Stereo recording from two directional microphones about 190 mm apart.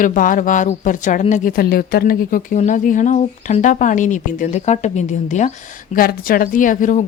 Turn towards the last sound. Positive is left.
turn(degrees=45)  # may be behind; listen again after turning